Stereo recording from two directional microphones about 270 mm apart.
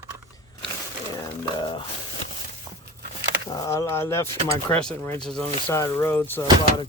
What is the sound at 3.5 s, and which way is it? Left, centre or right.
Speech, centre.